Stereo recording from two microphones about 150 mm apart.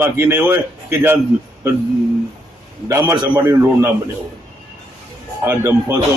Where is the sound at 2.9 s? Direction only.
20° right (ahead or behind).